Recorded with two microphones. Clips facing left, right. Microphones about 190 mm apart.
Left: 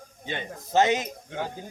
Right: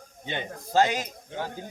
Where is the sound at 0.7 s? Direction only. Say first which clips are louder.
Left 1 dB; 20° left (ahead or behind).